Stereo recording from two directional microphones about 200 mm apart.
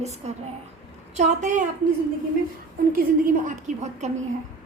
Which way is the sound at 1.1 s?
35° right (ahead or behind).